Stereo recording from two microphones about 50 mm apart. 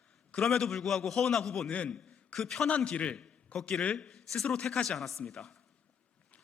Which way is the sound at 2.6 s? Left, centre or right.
Left.